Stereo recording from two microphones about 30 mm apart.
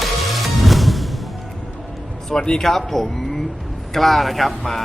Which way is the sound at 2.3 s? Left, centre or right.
Left.